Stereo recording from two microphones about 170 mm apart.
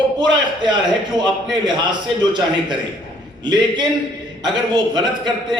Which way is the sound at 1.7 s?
25° right (ahead or behind).